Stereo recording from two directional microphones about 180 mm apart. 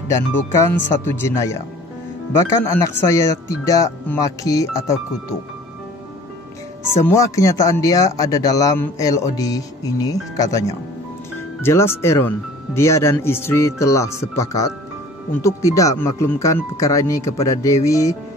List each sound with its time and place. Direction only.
0.1 s speech: 15° left (ahead or behind)
2.7 s a man's voice: 15° left (ahead or behind)
7.1 s a man's voice: 15° left (ahead or behind)